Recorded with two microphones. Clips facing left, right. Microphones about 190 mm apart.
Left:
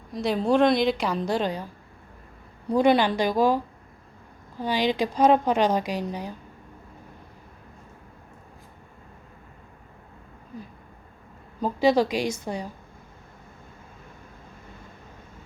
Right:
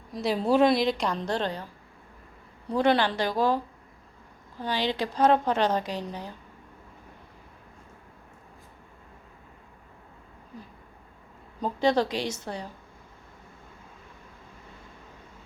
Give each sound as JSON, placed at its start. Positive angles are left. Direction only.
{"t": 0.1, "sound": "a woman's voice", "side_deg": 0}
{"t": 2.6, "sound": "a woman's voice", "side_deg": 15}
{"t": 11.6, "sound": "a woman's voice", "side_deg": 10}